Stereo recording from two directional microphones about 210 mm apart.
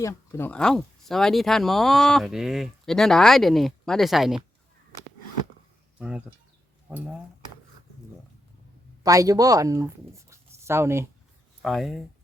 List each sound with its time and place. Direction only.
0.0 s speech: 15° left (ahead or behind)
6.0 s speech: 5° right (ahead or behind)
9.0 s speech: 15° right (ahead or behind)
10.2 s writing: 15° right (ahead or behind)
11.6 s speech: centre (ahead or behind)